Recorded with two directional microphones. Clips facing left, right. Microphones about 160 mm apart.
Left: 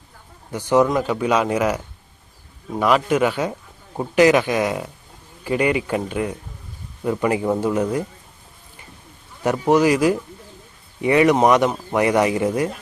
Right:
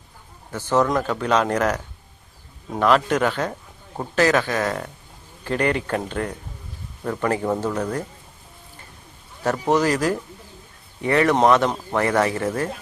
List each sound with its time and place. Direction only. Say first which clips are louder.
0.5 s speech: left 3 dB; 15° left (ahead or behind)
9.4 s speech: left 3 dB; 10° left (ahead or behind)